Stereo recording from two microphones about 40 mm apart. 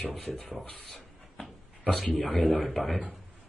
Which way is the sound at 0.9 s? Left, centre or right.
Centre.